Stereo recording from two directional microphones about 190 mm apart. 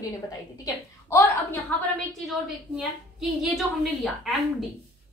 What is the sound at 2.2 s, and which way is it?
A woman's voice, centre (ahead or behind).